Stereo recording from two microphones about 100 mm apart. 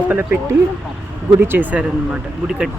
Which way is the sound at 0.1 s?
15° right (ahead or behind).